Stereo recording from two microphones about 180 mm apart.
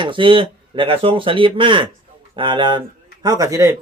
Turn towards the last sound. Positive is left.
turn(degrees=-15)  # may be behind; listen again after turning